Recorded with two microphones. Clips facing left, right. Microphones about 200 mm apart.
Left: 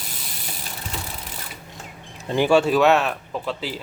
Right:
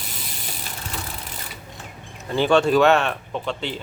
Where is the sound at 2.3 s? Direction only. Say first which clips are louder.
Even; 10° left (ahead or behind).